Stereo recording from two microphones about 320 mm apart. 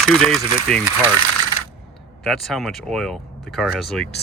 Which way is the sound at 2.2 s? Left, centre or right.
Centre.